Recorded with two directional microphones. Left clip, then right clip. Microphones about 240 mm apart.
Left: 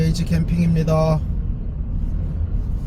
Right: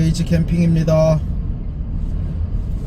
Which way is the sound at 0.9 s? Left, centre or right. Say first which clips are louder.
Right 5 dB; centre.